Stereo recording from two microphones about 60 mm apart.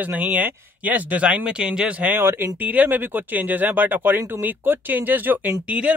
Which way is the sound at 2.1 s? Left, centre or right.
Right.